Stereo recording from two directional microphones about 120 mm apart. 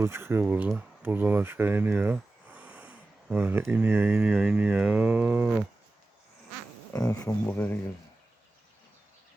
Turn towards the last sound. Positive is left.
turn(degrees=15)  # may be behind; listen again after turning